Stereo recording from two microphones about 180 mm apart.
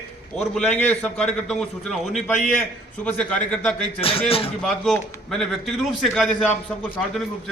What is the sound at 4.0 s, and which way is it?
Speech, 30° left (ahead or behind).